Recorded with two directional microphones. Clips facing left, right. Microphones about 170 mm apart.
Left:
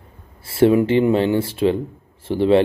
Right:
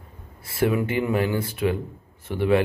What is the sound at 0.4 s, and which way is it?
Speech, 25° left (ahead or behind).